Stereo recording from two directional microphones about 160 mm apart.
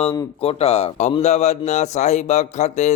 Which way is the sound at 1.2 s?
45° left (ahead or behind).